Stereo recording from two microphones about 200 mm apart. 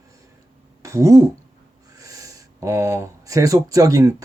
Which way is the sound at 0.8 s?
15° right (ahead or behind).